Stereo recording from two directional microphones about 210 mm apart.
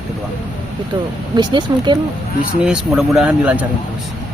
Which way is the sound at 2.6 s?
5° right (ahead or behind).